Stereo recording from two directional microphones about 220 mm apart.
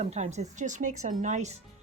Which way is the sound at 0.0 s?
30° right (ahead or behind).